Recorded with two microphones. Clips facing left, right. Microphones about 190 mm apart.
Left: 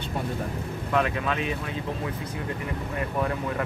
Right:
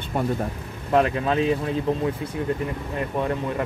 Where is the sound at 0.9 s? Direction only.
35° right (ahead or behind).